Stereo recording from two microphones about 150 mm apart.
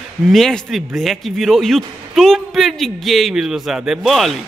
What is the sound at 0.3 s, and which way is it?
A man's voice, 5° left (ahead or behind).